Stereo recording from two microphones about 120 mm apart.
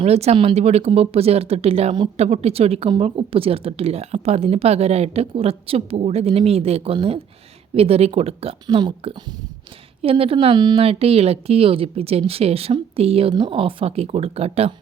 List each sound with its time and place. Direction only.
0.0 s speech: 60° right (ahead or behind)
2.1 s speech: 60° right (ahead or behind)
8.6 s speech: 35° right (ahead or behind)
10.0 s speech: 50° right (ahead or behind)
10.8 s speech: 55° right (ahead or behind)